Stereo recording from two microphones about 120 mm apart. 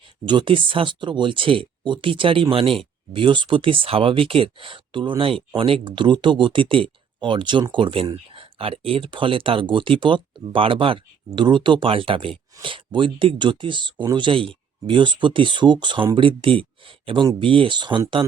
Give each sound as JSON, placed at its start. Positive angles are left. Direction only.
{"t": 0.3, "sound": "speech", "side_deg": -45}